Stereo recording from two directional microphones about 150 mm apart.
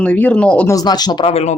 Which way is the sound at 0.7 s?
25° left (ahead or behind).